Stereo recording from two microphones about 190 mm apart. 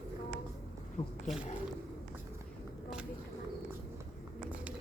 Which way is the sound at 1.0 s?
20° left (ahead or behind).